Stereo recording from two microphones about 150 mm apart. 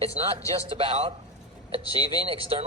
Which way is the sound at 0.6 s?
40° right (ahead or behind).